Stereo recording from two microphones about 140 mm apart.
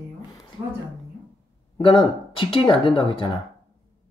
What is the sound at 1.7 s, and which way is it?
Speech, 35° left (ahead or behind).